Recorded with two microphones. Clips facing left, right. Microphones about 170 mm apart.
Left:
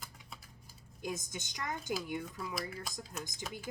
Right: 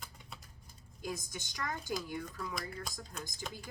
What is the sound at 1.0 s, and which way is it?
Speech, 20° left (ahead or behind).